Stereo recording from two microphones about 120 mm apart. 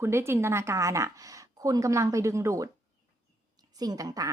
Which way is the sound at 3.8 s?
30° right (ahead or behind).